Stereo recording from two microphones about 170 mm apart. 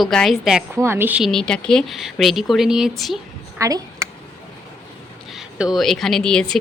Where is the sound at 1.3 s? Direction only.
5° left (ahead or behind).